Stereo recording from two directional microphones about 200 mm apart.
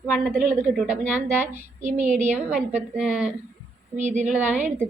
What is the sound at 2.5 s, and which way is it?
Speech, 5° right (ahead or behind).